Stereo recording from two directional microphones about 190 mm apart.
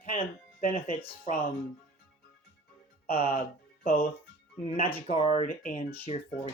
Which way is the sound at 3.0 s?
30° left (ahead or behind).